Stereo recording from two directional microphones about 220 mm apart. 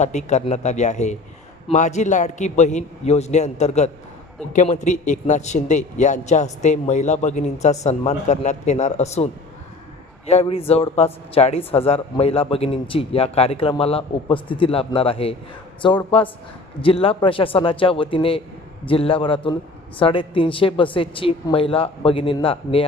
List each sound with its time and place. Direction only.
0.0 s a man's voice: 30° left (ahead or behind)